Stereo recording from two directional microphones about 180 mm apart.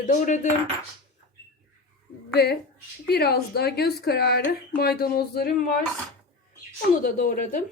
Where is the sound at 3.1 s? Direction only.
60° left (ahead or behind).